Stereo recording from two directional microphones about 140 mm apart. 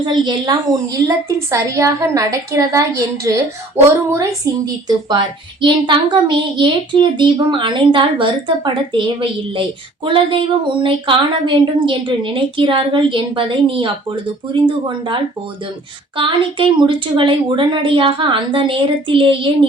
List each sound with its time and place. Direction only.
0.0 s a woman's voice: 30° right (ahead or behind)
1.0 s a woman's voice: 20° right (ahead or behind); by 19.5 s 40° right (ahead or behind)